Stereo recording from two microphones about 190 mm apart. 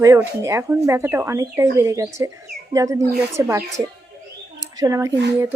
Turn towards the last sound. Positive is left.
turn(degrees=-15)  # may be behind; listen again after turning